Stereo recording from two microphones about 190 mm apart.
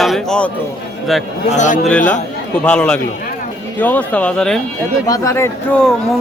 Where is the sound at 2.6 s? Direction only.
5° left (ahead or behind).